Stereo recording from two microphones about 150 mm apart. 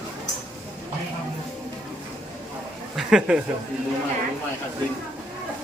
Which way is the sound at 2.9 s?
5° right (ahead or behind).